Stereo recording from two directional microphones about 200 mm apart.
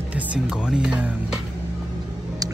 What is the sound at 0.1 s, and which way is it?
Speech, 5° right (ahead or behind).